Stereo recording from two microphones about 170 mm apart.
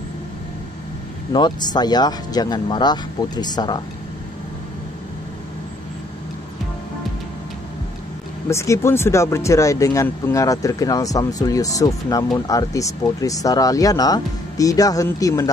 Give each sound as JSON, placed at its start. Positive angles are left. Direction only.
{"t": 1.3, "sound": "speech", "side_deg": 25}
{"t": 8.5, "sound": "speech", "side_deg": 15}